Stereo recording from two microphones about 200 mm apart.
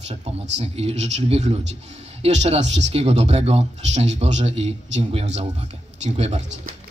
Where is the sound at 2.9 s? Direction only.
30° right (ahead or behind).